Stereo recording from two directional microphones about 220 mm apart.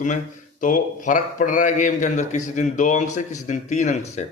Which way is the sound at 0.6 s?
35° left (ahead or behind).